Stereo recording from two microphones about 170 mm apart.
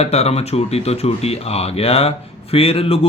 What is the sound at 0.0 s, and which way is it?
Speech, 40° left (ahead or behind).